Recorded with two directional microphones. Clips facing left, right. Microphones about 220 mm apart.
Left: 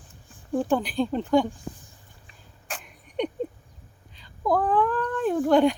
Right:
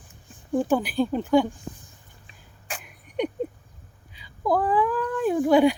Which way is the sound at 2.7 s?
5° right (ahead or behind).